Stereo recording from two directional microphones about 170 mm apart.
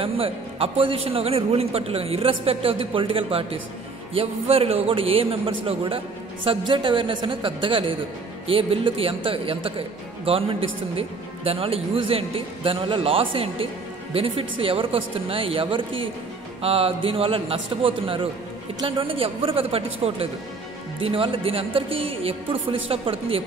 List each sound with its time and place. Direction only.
0.0 s a man's voice: 35° right (ahead or behind)